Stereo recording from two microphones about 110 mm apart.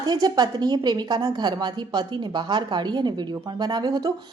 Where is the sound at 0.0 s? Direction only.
40° right (ahead or behind).